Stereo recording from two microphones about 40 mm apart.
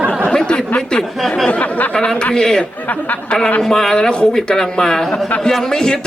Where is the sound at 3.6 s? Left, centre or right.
Centre.